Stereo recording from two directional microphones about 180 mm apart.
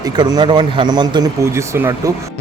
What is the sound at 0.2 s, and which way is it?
Speech, 25° right (ahead or behind).